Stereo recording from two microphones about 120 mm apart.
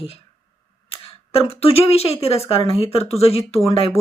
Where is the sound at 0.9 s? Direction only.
55° left (ahead or behind).